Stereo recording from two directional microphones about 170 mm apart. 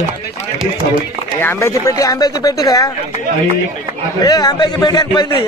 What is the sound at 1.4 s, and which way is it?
Speech, 15° left (ahead or behind).